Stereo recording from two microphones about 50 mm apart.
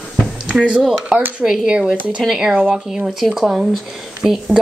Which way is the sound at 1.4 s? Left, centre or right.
Centre.